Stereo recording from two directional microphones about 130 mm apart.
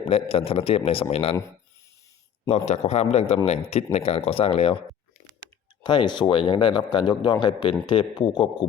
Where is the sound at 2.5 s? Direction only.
60° left (ahead or behind).